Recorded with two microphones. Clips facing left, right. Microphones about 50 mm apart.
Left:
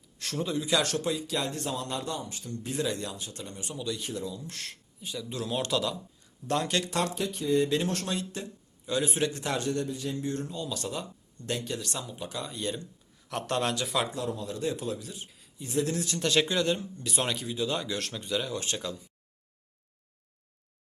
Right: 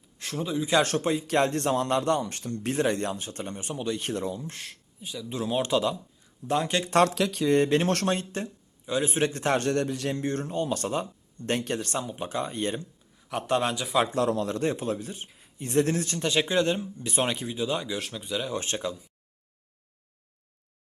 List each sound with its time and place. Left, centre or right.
0.3 s a man's voice: centre
0.6 s a man's voice: right
4.0 s a man's voice: right
5.3 s a man's voice: right
7.1 s speech: right
7.5 s a man's voice: right
9.6 s a man's voice: right
10.2 s speech: right
13.1 s a man's voice: centre
14.2 s speech: right
16.1 s a man's voice: centre
17.7 s a man's voice: centre
18.5 s speech: right